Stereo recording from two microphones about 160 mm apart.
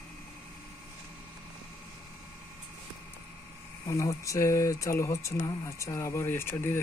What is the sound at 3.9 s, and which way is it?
Speech, 20° left (ahead or behind).